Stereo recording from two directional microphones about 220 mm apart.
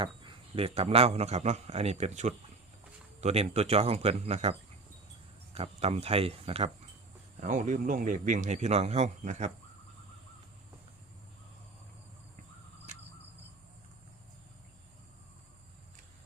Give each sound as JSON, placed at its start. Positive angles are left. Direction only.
{"t": 0.0, "sound": "a man's voice", "side_deg": -25}
{"t": 5.5, "sound": "a man's voice", "side_deg": -25}